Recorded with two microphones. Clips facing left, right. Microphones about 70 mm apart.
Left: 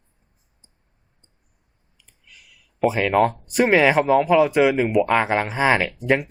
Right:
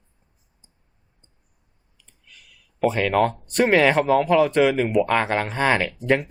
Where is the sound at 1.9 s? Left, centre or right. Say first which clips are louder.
Left 1 dB; centre.